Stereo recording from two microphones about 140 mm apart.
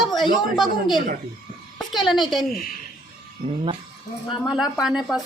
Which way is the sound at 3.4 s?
40° right (ahead or behind).